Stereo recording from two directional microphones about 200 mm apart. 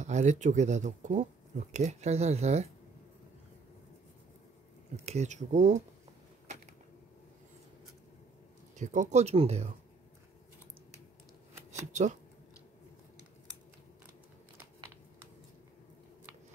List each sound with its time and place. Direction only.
0.0 s speech: 35° right (ahead or behind)
5.0 s speech: 35° right (ahead or behind)
6.4 s a sound: 35° right (ahead or behind)
8.7 s speech: 35° right (ahead or behind)
11.7 s speech: 35° right (ahead or behind)